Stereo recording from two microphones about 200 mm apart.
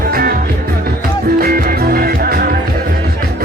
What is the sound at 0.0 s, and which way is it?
Music, 50° right (ahead or behind).